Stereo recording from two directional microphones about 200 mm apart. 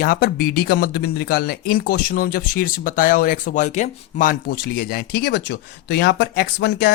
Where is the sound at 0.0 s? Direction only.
50° left (ahead or behind).